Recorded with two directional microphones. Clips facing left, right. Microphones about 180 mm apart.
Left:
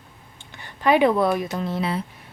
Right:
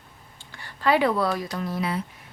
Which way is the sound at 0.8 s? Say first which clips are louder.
Left 4 dB; 20° left (ahead or behind).